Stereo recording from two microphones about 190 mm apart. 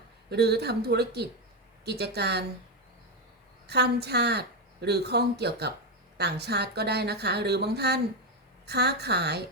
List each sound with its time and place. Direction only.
0.3 s a woman's voice: 60° right (ahead or behind)
3.7 s a woman's voice: 60° right (ahead or behind)